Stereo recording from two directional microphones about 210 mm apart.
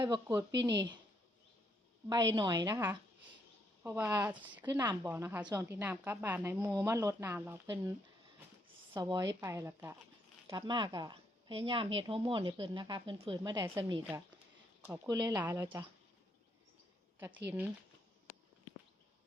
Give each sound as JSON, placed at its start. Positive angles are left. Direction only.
{"t": 0.0, "sound": "speech", "side_deg": -15}
{"t": 2.3, "sound": "a woman's voice", "side_deg": -20}
{"t": 17.2, "sound": "a woman's voice", "side_deg": -10}